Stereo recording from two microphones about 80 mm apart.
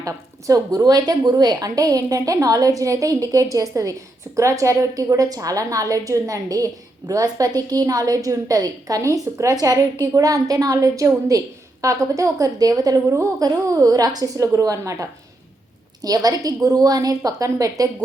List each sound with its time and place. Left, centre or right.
0.0 s a woman's voice: right